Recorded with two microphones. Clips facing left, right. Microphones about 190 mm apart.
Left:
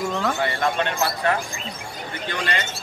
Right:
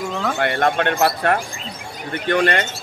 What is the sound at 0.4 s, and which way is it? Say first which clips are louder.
Speech: right 4 dB; 65° right (ahead or behind).